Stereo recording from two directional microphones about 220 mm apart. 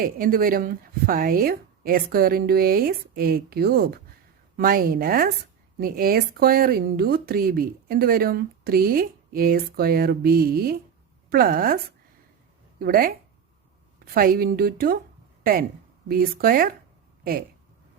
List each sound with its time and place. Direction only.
0.0 s speech: 40° right (ahead or behind)
12.8 s speech: 40° right (ahead or behind)
16.0 s speech: 40° right (ahead or behind)